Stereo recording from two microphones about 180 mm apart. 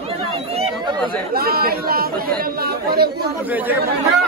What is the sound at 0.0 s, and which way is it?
Chatter, 35° right (ahead or behind).